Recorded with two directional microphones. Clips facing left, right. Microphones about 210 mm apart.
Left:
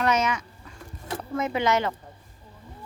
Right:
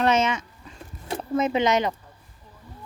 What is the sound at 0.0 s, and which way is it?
Speech, 25° right (ahead or behind).